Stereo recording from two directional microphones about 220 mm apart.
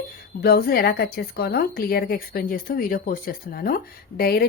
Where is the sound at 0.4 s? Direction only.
45° left (ahead or behind).